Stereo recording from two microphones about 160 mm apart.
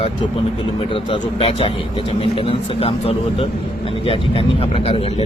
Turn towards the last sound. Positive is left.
turn(degrees=35)  # may be behind; listen again after turning